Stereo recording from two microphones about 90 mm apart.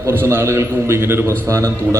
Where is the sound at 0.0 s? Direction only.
25° right (ahead or behind).